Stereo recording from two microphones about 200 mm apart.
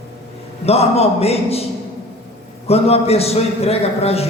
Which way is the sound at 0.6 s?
30° left (ahead or behind).